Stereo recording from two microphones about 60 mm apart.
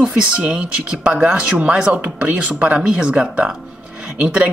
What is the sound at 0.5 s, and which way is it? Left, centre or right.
Speech, centre.